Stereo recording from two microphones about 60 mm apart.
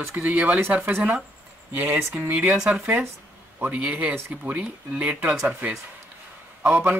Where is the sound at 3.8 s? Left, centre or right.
Right.